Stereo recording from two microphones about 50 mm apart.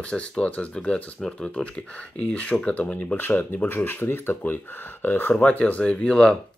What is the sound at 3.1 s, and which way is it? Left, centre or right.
Speech, left.